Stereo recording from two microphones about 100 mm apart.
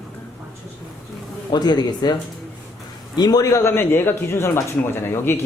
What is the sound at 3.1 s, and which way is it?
A man's voice, 40° left (ahead or behind).